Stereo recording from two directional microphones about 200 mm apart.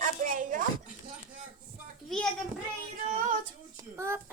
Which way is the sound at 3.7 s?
15° right (ahead or behind).